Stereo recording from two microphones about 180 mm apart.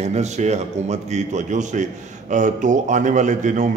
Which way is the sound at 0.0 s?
40° right (ahead or behind).